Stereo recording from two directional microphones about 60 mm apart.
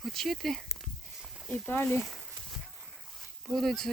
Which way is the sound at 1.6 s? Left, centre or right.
Left.